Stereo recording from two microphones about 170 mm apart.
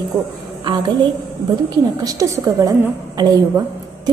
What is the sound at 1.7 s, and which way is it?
A woman's voice, 25° right (ahead or behind).